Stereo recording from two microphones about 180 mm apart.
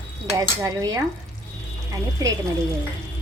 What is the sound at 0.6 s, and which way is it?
Speech, 20° right (ahead or behind).